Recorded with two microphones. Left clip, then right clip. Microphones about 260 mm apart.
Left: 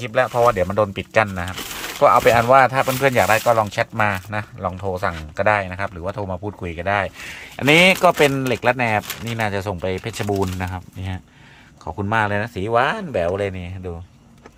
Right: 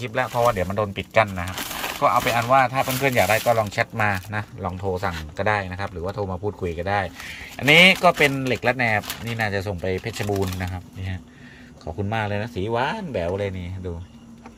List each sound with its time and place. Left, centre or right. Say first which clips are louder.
0.0 s speech: left 4 dB; centre